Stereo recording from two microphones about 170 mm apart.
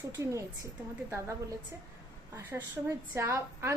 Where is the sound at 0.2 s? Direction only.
20° right (ahead or behind).